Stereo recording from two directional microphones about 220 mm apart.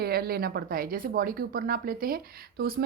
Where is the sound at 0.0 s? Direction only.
45° right (ahead or behind).